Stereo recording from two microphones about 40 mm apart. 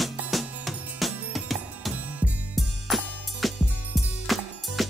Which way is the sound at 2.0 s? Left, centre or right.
Right.